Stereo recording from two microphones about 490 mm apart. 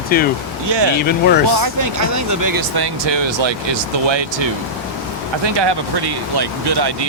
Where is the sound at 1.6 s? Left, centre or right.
Right.